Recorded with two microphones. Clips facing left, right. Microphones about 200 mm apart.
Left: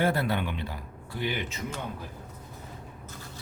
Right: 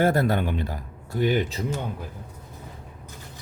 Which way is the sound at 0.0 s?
45° right (ahead or behind).